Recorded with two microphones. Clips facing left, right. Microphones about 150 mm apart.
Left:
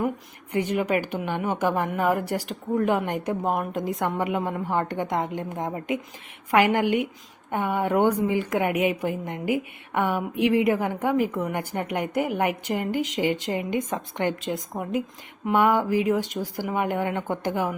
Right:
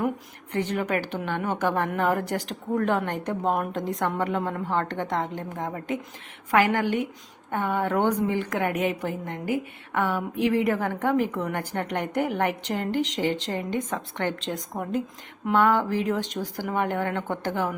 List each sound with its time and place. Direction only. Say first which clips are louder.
0.5 s a woman's voice: left 2 dB; 10° left (ahead or behind)